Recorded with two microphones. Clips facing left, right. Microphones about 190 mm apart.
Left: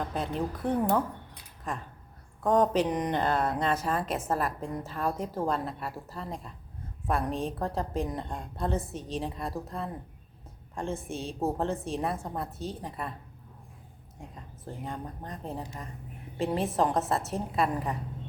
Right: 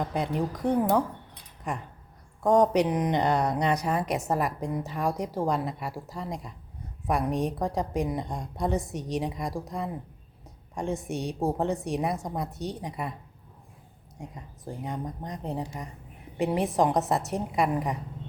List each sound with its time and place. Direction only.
0.0 s a woman's voice: 15° right (ahead or behind)
14.2 s speech: 15° right (ahead or behind)